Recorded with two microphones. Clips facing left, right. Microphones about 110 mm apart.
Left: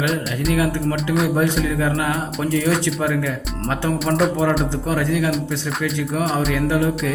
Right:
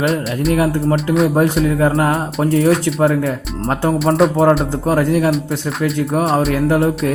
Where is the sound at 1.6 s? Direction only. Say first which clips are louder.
Right 6 dB; 35° right (ahead or behind).